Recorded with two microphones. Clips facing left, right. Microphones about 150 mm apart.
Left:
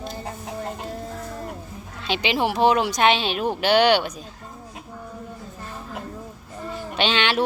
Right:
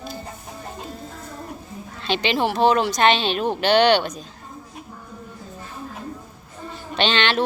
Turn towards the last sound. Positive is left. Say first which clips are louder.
# right 1 dB
turn(degrees=5)  # may be behind; listen again after turning